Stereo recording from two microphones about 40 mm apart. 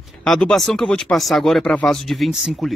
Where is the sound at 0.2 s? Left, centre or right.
Centre.